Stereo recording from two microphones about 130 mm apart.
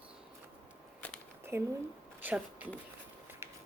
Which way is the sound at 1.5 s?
20° right (ahead or behind).